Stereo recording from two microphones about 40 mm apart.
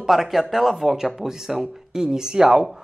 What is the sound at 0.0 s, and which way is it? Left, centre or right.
Speech, centre.